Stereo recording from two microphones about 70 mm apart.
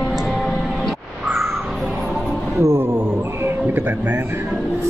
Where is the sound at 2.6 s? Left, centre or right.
Right.